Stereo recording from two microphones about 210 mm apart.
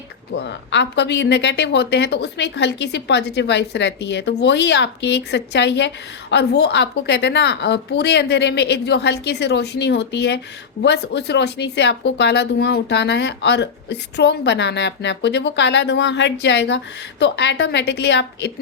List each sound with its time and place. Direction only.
0.7 s a woman's voice: 55° left (ahead or behind)